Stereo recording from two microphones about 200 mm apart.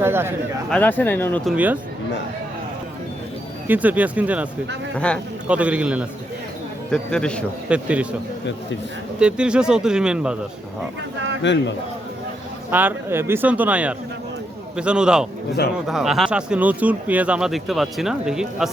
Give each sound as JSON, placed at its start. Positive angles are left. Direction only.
{"t": 0.0, "sound": "speech", "side_deg": -10}
{"t": 0.7, "sound": "speech", "side_deg": 10}
{"t": 1.5, "sound": "speech", "side_deg": -10}
{"t": 3.7, "sound": "speech", "side_deg": -10}
{"t": 4.9, "sound": "speech", "side_deg": 5}
{"t": 5.5, "sound": "speech", "side_deg": -5}
{"t": 7.7, "sound": "speech", "side_deg": -5}
{"t": 9.1, "sound": "speech", "side_deg": -5}
{"t": 11.4, "sound": "speech", "side_deg": 60}
{"t": 12.7, "sound": "speech", "side_deg": -10}